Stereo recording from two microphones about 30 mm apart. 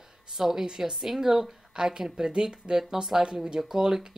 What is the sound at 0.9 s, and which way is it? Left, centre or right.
Speech, centre.